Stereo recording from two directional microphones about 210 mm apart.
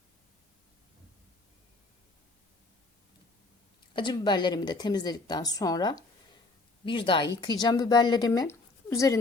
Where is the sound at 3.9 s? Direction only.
20° left (ahead or behind).